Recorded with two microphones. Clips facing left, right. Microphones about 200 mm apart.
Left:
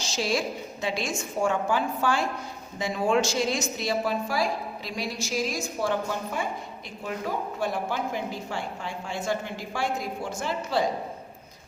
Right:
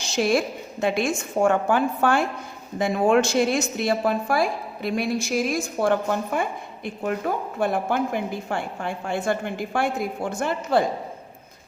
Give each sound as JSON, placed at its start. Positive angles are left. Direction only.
{"t": 0.0, "sound": "a woman's voice", "side_deg": -55}